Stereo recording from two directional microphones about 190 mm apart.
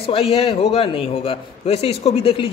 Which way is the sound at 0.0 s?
30° left (ahead or behind).